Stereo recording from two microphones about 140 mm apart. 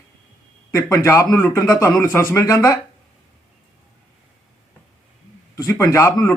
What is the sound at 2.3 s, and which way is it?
Speech, 20° left (ahead or behind).